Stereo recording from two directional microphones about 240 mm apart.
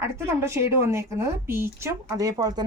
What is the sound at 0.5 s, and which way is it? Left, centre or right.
Speech, centre.